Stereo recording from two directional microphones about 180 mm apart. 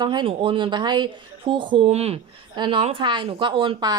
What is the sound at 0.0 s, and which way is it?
A woman's voice, 25° right (ahead or behind).